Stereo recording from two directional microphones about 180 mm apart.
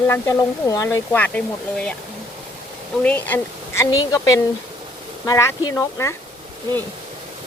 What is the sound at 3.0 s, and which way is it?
Speech, 10° left (ahead or behind).